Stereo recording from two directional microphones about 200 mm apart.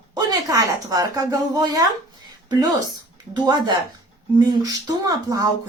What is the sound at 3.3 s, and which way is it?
Speech, 20° right (ahead or behind).